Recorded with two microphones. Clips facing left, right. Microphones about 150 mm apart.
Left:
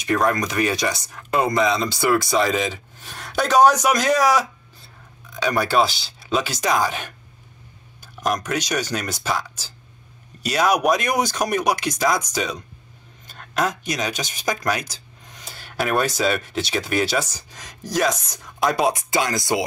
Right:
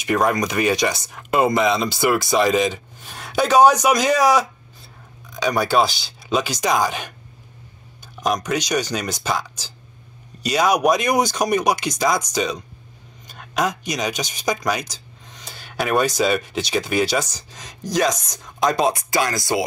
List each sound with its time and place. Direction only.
0.0 s speech: 5° right (ahead or behind)
1.6 s speech: 20° right (ahead or behind)
1.9 s speech: 5° right (ahead or behind)
8.2 s speech: centre (ahead or behind)
18.9 s speech: 20° left (ahead or behind)